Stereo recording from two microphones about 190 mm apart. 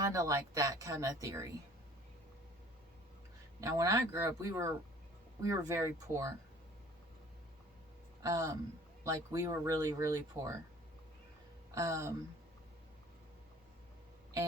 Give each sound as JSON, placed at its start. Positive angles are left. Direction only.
{"t": 0.0, "sound": "speech", "side_deg": -15}
{"t": 3.6, "sound": "speech", "side_deg": -20}
{"t": 8.2, "sound": "speech", "side_deg": -20}
{"t": 11.7, "sound": "speech", "side_deg": -15}